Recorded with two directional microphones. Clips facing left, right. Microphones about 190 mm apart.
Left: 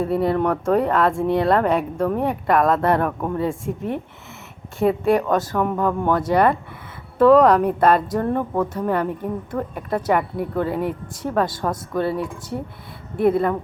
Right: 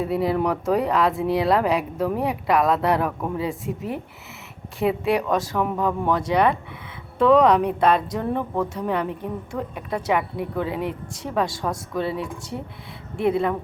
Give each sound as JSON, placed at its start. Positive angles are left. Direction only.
{"t": 0.0, "sound": "speech", "side_deg": 0}